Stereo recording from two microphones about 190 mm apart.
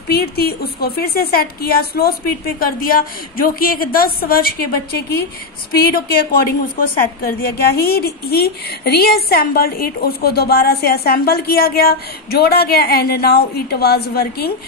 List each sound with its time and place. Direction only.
0.1 s a woman's voice: 55° left (ahead or behind)